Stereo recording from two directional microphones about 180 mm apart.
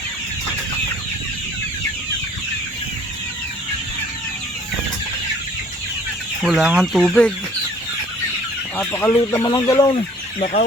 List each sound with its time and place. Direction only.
6.4 s speech: centre (ahead or behind)
8.8 s speech: 10° left (ahead or behind)